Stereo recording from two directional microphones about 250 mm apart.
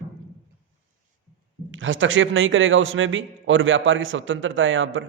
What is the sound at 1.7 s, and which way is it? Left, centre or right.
A man's voice, right.